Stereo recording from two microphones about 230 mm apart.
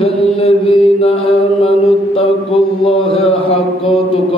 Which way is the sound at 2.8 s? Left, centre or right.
Left.